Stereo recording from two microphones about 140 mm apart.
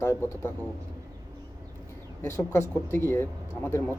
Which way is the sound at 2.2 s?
20° left (ahead or behind).